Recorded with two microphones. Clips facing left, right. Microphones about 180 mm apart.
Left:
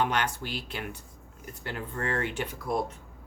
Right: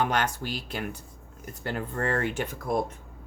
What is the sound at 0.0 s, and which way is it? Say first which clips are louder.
Speech: right 2 dB; 45° right (ahead or behind).